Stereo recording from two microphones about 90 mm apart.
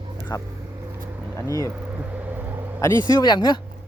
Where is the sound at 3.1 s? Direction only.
50° left (ahead or behind).